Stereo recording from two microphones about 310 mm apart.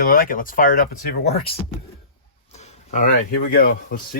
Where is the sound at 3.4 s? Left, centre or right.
Left.